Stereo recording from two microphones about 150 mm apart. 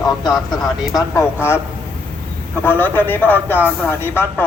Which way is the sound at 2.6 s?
15° left (ahead or behind).